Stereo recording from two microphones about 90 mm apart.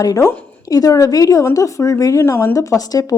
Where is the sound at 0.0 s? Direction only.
40° left (ahead or behind).